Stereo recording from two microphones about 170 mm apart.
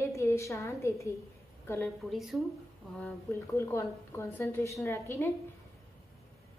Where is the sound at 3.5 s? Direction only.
15° left (ahead or behind).